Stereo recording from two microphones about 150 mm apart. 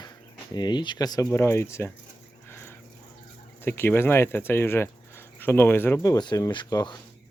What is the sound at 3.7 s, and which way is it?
Speech, 15° left (ahead or behind).